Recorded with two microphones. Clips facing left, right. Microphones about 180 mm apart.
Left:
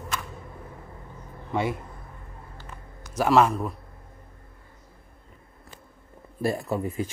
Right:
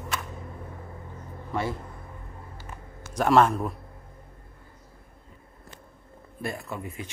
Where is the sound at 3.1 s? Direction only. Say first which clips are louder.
Even; 5° left (ahead or behind).